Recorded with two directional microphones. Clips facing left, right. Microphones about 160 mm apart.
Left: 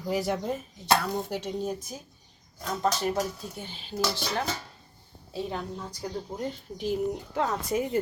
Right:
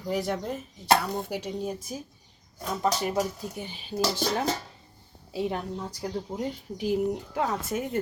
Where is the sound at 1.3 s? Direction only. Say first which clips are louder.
Even; 10° right (ahead or behind).